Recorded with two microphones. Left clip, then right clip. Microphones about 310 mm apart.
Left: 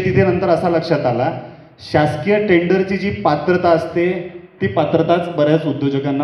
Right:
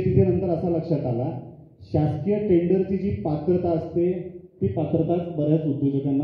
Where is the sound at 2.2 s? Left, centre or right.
Centre.